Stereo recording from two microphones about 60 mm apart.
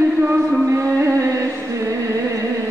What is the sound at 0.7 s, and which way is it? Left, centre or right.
Music, right.